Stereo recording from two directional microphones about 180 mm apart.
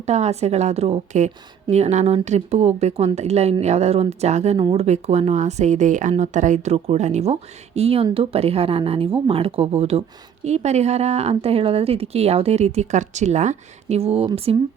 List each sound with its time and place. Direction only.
0.0 s a woman's voice: 35° right (ahead or behind)